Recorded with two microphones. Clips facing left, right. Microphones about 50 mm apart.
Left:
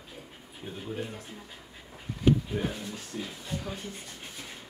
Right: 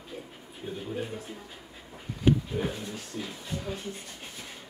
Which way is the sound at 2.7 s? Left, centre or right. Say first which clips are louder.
Right 1 dB; centre.